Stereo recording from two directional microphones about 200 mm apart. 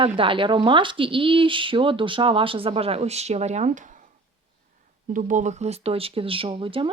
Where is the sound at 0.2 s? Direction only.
25° right (ahead or behind).